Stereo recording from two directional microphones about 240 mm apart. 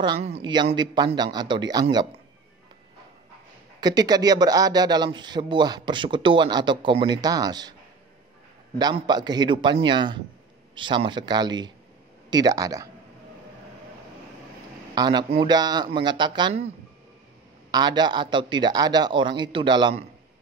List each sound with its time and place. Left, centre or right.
0.0 s speech: right
3.8 s speech: centre
8.7 s speech: centre
15.0 s speech: centre